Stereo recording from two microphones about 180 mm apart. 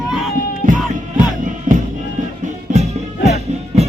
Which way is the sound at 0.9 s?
45° right (ahead or behind).